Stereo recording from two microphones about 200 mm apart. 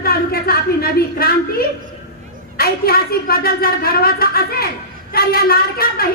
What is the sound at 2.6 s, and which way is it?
A woman's voice, 50° left (ahead or behind).